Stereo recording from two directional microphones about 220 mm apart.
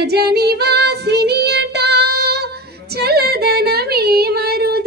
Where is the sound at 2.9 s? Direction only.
45° right (ahead or behind).